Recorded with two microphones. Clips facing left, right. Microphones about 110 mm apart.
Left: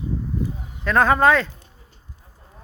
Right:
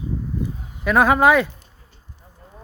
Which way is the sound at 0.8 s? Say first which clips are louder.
Right 1 dB; 10° right (ahead or behind).